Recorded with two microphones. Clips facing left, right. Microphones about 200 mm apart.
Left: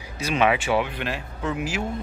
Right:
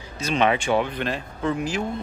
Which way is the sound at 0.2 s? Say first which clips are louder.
Even; 5° left (ahead or behind).